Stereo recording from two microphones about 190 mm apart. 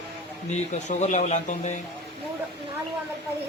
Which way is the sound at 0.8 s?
40° left (ahead or behind).